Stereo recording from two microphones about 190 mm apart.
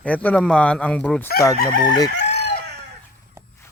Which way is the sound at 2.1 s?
65° left (ahead or behind).